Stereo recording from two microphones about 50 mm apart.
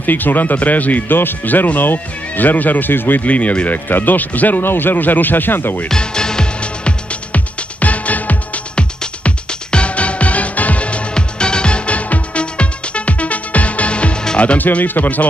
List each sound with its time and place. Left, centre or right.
0.0 s speech: left
3.3 s speech: left
5.9 s music: centre; by 8.8 s left
9.0 s music: centre
14.6 s speech: left